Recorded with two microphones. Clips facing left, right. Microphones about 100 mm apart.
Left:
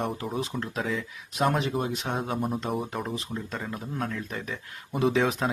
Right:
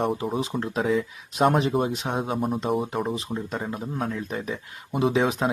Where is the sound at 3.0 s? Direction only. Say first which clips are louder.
Right 4 dB; 20° right (ahead or behind).